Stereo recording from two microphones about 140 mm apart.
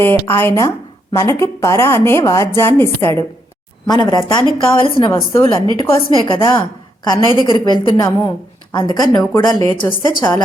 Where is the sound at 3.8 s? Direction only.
30° left (ahead or behind).